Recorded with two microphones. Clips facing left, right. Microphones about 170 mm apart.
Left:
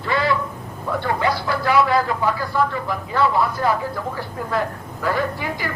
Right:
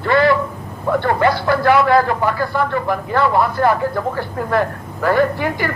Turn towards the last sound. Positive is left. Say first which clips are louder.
# right 7 dB
turn(degrees=-60)  # may be behind; listen again after turning